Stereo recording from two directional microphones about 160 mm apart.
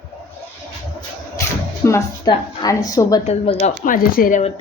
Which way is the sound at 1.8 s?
15° left (ahead or behind).